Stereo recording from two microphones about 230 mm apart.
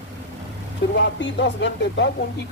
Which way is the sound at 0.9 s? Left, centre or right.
Left.